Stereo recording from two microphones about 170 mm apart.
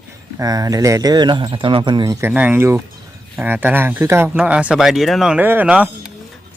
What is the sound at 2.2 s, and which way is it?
Speech, 10° right (ahead or behind).